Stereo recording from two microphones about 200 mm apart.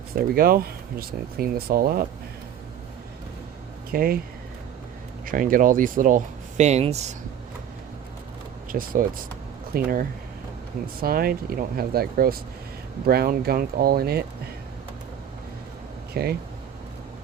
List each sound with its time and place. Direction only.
0.2 s speech: 50° right (ahead or behind)
3.9 s speech: 45° right (ahead or behind)
5.2 s speech: 45° right (ahead or behind)
8.7 s speech: 45° right (ahead or behind)
11.0 s speech: 50° right (ahead or behind)
16.1 s speech: 50° right (ahead or behind)